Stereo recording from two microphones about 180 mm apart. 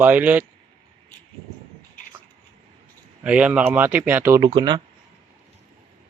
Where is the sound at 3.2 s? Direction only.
5° right (ahead or behind).